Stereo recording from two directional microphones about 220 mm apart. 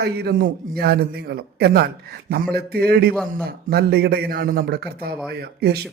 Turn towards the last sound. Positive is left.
turn(degrees=-45)  # may be behind; listen again after turning